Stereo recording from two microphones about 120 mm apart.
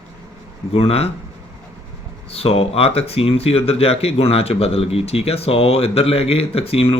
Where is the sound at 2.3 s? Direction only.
55° left (ahead or behind).